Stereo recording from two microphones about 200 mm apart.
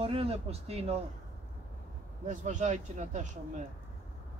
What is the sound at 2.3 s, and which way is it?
Speech, 40° right (ahead or behind).